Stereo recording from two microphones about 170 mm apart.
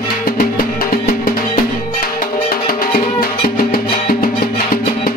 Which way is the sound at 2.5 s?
60° left (ahead or behind).